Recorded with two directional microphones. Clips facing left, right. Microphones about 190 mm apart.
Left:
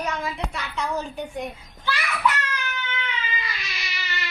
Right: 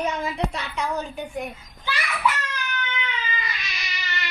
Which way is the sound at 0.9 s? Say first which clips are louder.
Even; centre (ahead or behind).